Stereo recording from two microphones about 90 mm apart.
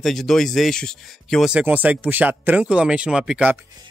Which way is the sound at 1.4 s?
15° right (ahead or behind).